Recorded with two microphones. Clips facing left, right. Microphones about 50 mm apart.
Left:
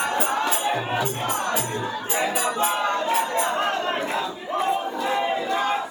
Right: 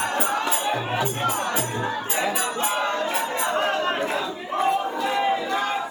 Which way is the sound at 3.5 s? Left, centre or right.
Centre.